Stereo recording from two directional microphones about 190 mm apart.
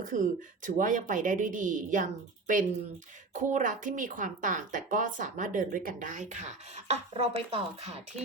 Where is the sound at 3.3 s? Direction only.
40° right (ahead or behind).